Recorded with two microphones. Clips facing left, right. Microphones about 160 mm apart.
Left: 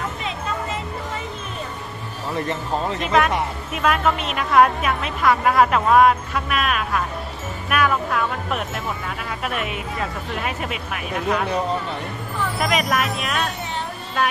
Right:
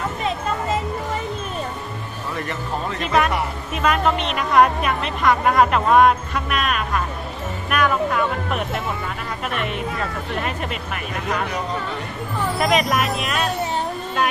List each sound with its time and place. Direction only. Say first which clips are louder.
2.3 s speech: left 3 dB; 30° left (ahead or behind)
3.0 s a woman's voice: right 1 dB; centre (ahead or behind)
12.5 s a woman's voice: right 2 dB; centre (ahead or behind)